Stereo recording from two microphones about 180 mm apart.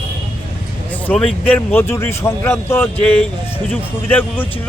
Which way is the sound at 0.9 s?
5° left (ahead or behind).